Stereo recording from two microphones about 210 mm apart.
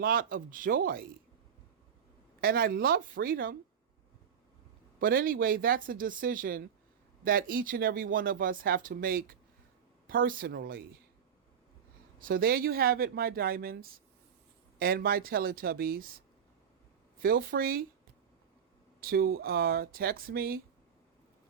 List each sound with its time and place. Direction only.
0.0 s speech: 45° right (ahead or behind)
2.4 s speech: 45° right (ahead or behind)
4.9 s speech: 45° right (ahead or behind)
12.3 s speech: 45° right (ahead or behind)
14.8 s speech: 45° right (ahead or behind)
17.2 s speech: 45° right (ahead or behind)
18.9 s speech: 45° right (ahead or behind)